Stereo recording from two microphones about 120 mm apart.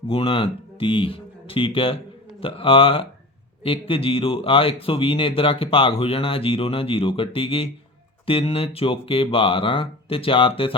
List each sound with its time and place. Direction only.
0.1 s speech: 50° left (ahead or behind)